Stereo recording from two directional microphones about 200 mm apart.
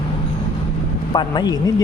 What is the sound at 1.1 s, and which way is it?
Speech, 20° left (ahead or behind).